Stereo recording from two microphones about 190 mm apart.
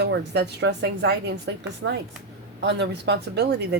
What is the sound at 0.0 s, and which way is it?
Speech, 65° right (ahead or behind).